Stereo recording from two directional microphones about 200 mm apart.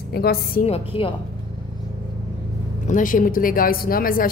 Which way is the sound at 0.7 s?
30° left (ahead or behind).